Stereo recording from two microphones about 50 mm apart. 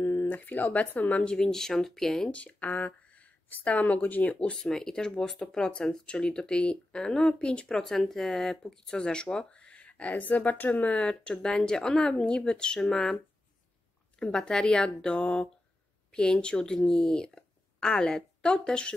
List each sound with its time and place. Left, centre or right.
0.0 s a sound: left
0.3 s speech: left
1.3 s speech: centre
2.3 s speech: left
4.6 s speech: centre; by 11.0 s left
11.0 s speech: centre
14.2 s speech: centre